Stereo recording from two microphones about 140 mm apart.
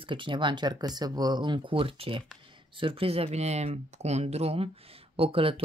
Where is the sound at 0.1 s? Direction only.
35° right (ahead or behind).